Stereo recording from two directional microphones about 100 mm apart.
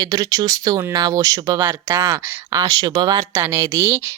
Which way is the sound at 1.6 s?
25° right (ahead or behind).